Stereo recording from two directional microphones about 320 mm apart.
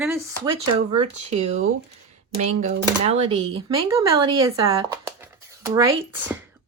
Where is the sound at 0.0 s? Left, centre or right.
Centre.